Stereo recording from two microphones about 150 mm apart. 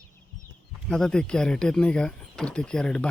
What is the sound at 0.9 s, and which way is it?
Speech, 5° left (ahead or behind).